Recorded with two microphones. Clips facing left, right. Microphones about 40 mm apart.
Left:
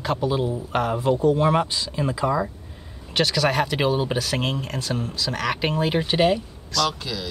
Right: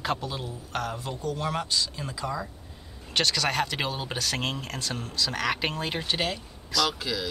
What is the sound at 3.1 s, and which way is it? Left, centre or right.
Speech, centre.